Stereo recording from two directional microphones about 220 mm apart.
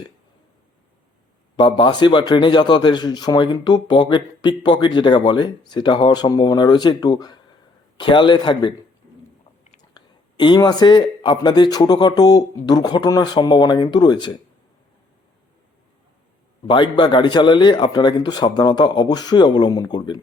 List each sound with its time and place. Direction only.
1.5 s a man's voice: 20° left (ahead or behind)
9.9 s a man's voice: 20° left (ahead or behind)
16.6 s a man's voice: 20° left (ahead or behind)